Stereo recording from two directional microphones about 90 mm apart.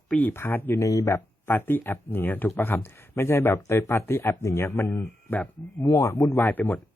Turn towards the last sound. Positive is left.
turn(degrees=20)  # may be behind; listen again after turning